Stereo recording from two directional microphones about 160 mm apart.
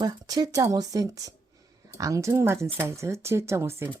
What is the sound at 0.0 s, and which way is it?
Speech, 25° right (ahead or behind).